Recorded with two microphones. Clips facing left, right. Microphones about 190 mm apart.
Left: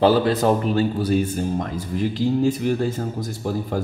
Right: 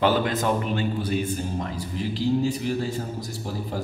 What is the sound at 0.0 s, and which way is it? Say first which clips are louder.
A man's voice: left 5 dB; 35° left (ahead or behind).